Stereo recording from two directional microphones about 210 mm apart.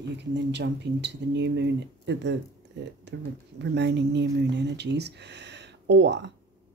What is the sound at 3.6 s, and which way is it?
Speech, 55° right (ahead or behind).